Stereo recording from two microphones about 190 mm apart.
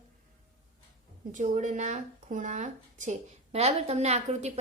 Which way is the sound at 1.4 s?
40° right (ahead or behind).